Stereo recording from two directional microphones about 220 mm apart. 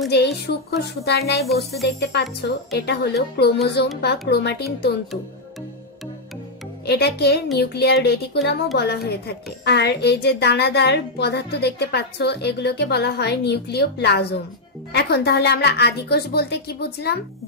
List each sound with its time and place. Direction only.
0.1 s speech: 50° left (ahead or behind)
6.9 s speech: 45° left (ahead or behind)